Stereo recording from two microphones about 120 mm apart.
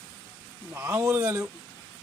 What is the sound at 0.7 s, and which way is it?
Speech, 20° right (ahead or behind).